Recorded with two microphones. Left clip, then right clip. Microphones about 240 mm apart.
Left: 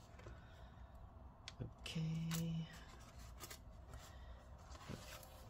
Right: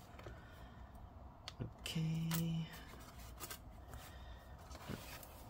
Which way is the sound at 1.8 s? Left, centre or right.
Centre.